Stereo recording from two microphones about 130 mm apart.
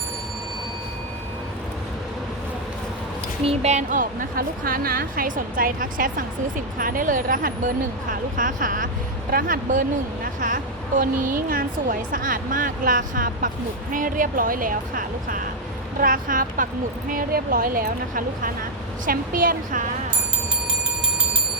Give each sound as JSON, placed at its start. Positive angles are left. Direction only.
{"t": 3.4, "sound": "a woman's voice", "side_deg": -55}
{"t": 4.7, "sound": "a woman's voice", "side_deg": -90}
{"t": 9.5, "sound": "speech", "side_deg": -80}
{"t": 10.4, "sound": "a woman's voice", "side_deg": -90}